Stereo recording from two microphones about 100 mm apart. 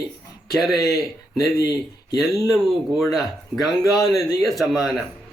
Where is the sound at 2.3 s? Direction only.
35° left (ahead or behind).